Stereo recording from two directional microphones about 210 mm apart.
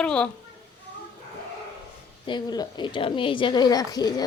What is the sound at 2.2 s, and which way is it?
Speech, 20° left (ahead or behind).